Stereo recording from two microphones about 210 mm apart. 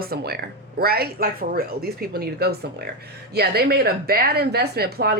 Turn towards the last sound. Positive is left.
turn(degrees=-50)  # may be behind; listen again after turning